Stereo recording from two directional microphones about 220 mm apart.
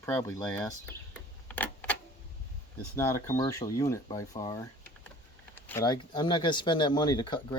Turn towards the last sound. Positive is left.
turn(degrees=20)  # may be behind; listen again after turning